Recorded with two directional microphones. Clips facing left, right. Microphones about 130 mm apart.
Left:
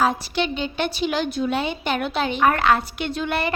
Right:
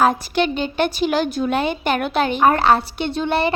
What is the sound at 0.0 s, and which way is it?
A woman's voice, 50° right (ahead or behind).